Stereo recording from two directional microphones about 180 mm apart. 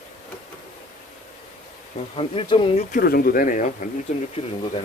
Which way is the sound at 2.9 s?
55° left (ahead or behind).